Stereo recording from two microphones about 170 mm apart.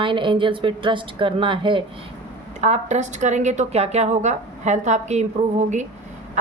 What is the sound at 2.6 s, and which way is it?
A woman's voice, 40° right (ahead or behind).